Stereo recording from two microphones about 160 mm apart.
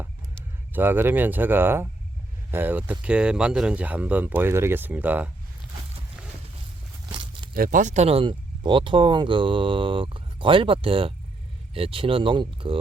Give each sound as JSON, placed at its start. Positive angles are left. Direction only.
{"t": 0.7, "sound": "speech", "side_deg": -10}
{"t": 7.1, "sound": "a sound", "side_deg": -30}
{"t": 7.5, "sound": "speech", "side_deg": -60}